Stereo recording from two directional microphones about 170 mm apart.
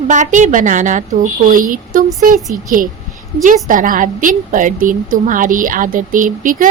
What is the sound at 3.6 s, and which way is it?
A woman's voice, 50° right (ahead or behind).